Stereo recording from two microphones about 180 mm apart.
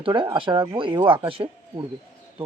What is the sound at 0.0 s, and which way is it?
Speech, 25° right (ahead or behind).